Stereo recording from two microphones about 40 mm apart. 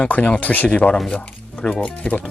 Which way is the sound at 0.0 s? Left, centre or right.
Left.